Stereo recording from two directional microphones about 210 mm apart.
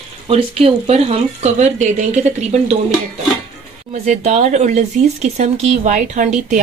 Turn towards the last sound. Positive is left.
turn(degrees=-35)  # may be behind; listen again after turning